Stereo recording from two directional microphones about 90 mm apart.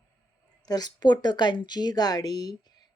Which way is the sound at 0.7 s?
50° left (ahead or behind).